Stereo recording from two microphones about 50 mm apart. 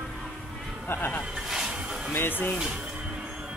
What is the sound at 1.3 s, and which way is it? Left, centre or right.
Snake, centre.